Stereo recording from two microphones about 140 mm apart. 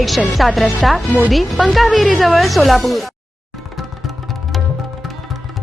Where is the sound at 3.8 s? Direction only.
Centre (ahead or behind).